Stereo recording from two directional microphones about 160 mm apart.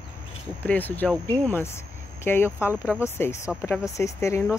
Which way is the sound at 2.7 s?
10° right (ahead or behind).